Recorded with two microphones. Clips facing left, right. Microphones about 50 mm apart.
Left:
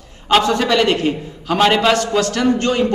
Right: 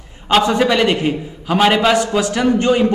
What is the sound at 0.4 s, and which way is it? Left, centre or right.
A man's voice, centre.